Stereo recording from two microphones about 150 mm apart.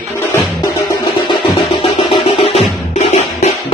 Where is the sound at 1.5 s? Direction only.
35° left (ahead or behind).